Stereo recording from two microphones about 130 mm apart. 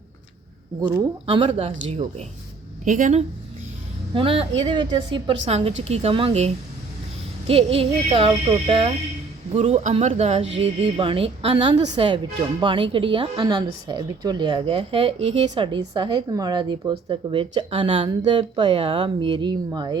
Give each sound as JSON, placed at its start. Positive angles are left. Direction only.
{"t": 1.5, "sound": "a woman's voice", "side_deg": -50}
{"t": 1.7, "sound": "speech", "side_deg": -65}
{"t": 2.8, "sound": "speech", "side_deg": -80}
{"t": 4.1, "sound": "a woman's voice", "side_deg": -45}
{"t": 5.5, "sound": "a woman's voice", "side_deg": -55}
{"t": 9.5, "sound": "speech", "side_deg": -55}
{"t": 10.9, "sound": "a woman's voice", "side_deg": -45}